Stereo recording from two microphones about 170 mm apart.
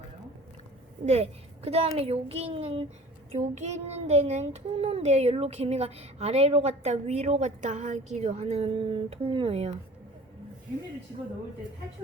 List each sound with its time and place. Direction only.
1.0 s child singing: 35° right (ahead or behind)